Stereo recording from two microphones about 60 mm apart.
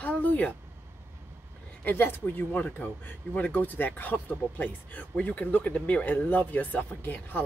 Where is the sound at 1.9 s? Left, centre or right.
Left.